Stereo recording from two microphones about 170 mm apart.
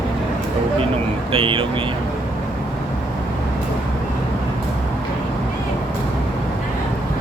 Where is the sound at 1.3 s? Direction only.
30° right (ahead or behind).